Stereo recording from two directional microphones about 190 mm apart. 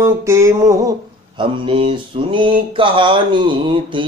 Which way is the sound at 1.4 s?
25° right (ahead or behind).